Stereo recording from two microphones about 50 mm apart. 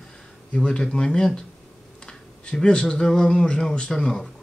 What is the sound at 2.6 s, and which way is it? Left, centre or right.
Speech, centre.